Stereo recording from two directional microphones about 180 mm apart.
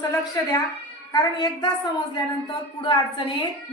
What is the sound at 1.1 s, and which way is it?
A woman's voice, 25° left (ahead or behind).